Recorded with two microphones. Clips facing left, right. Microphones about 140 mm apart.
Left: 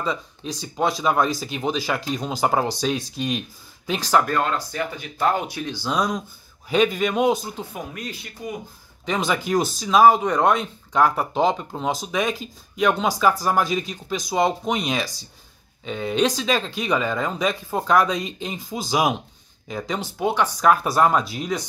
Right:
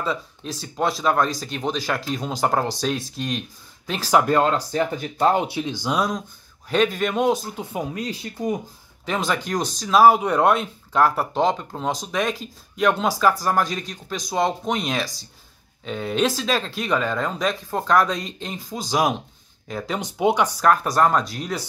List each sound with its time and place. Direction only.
0.0 s speech: centre (ahead or behind)
4.0 s speech: 10° right (ahead or behind)
4.3 s speech: 25° right (ahead or behind)
4.6 s speech: 40° right (ahead or behind)
5.2 s speech: 25° right (ahead or behind)
5.9 s speech: centre (ahead or behind)
7.7 s speech: 25° right (ahead or behind)
9.0 s speech: centre (ahead or behind)
20.0 s speech: 20° right (ahead or behind)
20.6 s speech: 5° left (ahead or behind)